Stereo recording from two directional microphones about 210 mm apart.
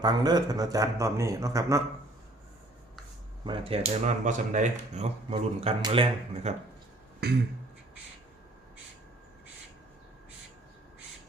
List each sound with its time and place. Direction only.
0.0 s a man's voice: 20° right (ahead or behind)
3.4 s speech: 25° right (ahead or behind)
7.2 s beatboxing: 50° right (ahead or behind)